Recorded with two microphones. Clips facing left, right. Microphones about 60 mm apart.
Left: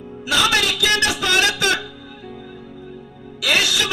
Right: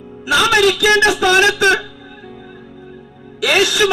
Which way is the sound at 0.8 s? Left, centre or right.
Right.